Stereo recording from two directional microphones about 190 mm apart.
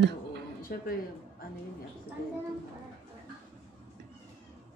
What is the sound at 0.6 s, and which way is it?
Speech, 50° left (ahead or behind).